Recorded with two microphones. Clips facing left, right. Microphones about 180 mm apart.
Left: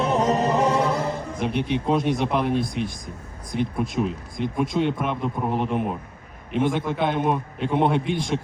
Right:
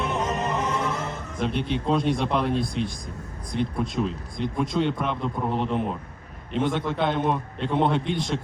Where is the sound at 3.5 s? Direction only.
5° left (ahead or behind).